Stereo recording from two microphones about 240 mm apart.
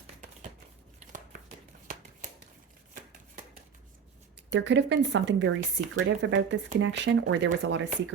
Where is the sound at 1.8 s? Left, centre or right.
Right.